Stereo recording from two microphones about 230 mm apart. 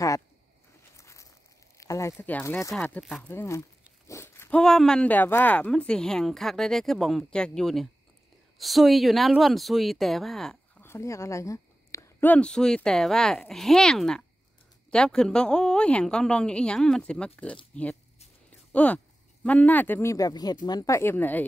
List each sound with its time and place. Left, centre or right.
0.9 s a sound: centre
1.8 s speech: centre
3.3 s speech: centre